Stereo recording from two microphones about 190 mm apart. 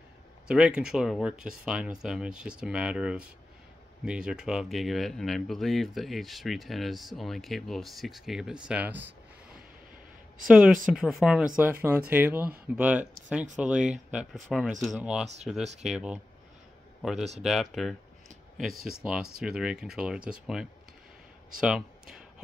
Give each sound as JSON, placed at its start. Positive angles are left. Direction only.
{"t": 0.5, "sound": "speech", "side_deg": -5}
{"t": 10.5, "sound": "speech", "side_deg": -5}